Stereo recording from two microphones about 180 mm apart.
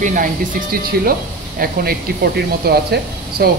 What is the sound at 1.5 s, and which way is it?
Speech, 60° right (ahead or behind).